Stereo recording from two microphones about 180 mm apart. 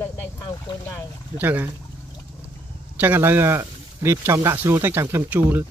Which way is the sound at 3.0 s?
10° right (ahead or behind).